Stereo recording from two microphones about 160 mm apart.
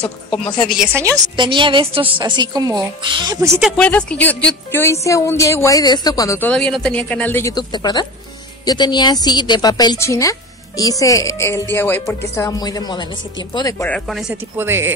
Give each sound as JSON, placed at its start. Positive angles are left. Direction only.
{"t": 1.3, "sound": "a woman's voice", "side_deg": -30}
{"t": 3.6, "sound": "a woman's voice", "side_deg": 5}
{"t": 6.5, "sound": "a woman's voice", "side_deg": 5}
{"t": 7.5, "sound": "speech", "side_deg": 25}
{"t": 13.8, "sound": "speech", "side_deg": 0}
{"t": 14.3, "sound": "speech", "side_deg": -15}